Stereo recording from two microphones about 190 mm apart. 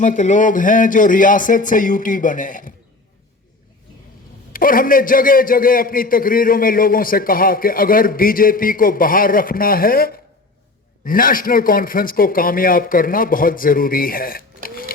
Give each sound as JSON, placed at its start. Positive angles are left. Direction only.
{"t": 0.0, "sound": "a man's voice", "side_deg": 40}
{"t": 4.5, "sound": "a man's voice", "side_deg": 50}